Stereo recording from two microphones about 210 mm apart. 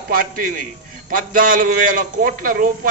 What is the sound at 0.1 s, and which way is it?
A man's voice, 40° right (ahead or behind).